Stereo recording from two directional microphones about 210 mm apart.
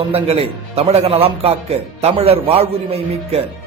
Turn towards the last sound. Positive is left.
turn(degrees=-30)  # may be behind; listen again after turning